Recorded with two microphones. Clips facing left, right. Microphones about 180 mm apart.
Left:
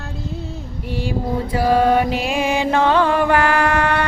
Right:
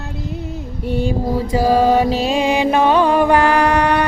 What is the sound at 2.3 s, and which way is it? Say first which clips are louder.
Music: right 3 dB; 20° right (ahead or behind).